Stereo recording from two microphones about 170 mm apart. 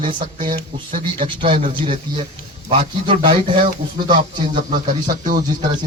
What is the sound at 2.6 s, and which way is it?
Speech, 30° right (ahead or behind).